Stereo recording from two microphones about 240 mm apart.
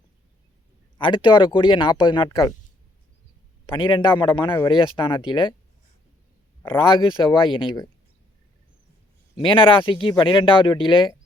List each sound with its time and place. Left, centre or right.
0.9 s speech: left
3.7 s speech: centre
6.7 s speech: left
9.3 s speech: centre